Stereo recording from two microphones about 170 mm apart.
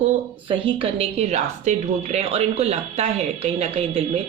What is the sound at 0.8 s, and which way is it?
A woman's voice, 35° right (ahead or behind).